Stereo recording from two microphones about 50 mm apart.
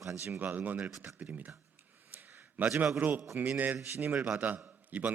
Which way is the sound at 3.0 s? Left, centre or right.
Right.